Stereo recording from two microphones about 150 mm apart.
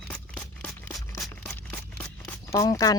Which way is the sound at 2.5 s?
25° left (ahead or behind).